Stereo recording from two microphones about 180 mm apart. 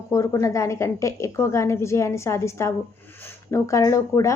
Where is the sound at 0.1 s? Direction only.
15° left (ahead or behind).